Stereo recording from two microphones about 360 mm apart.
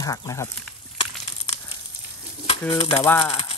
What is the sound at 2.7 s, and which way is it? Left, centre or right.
Speech, centre.